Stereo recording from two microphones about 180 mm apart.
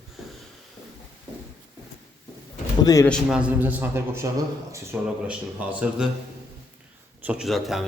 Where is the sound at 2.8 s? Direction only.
20° left (ahead or behind).